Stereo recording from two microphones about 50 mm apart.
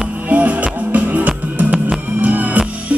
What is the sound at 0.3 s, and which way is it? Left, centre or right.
Music, right.